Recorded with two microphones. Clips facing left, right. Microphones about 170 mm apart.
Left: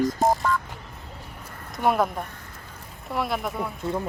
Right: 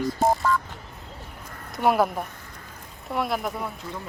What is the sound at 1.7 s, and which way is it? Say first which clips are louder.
Speech: right 1 dB; centre (ahead or behind).